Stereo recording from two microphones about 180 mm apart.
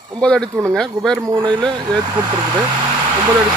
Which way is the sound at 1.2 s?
25° right (ahead or behind).